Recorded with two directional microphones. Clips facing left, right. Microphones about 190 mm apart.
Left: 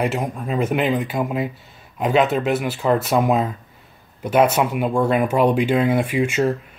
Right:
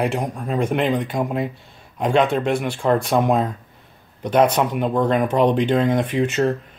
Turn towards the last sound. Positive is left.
turn(degrees=10)  # may be behind; listen again after turning